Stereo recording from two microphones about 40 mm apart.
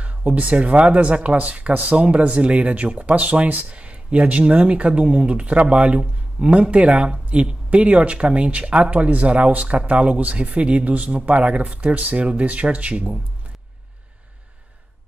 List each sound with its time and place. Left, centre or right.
0.0 s speech: right